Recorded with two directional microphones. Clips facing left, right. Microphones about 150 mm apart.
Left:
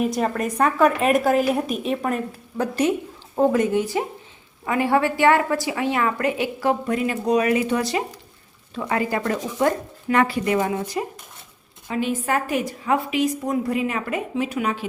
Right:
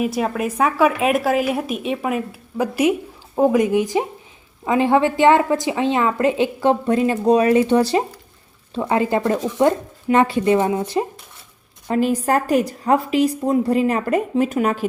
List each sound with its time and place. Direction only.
0.0 s a woman's voice: 5° right (ahead or behind); by 11.0 s 30° right (ahead or behind)
11.9 s a woman's voice: 40° right (ahead or behind)